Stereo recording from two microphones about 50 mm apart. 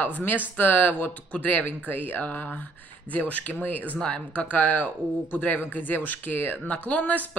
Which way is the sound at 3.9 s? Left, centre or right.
Left.